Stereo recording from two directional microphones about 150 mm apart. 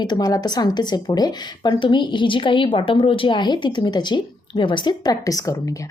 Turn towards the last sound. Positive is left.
turn(degrees=25)  # may be behind; listen again after turning